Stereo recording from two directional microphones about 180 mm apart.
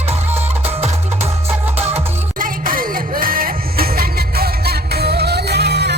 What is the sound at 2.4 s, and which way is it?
Music, 50° right (ahead or behind).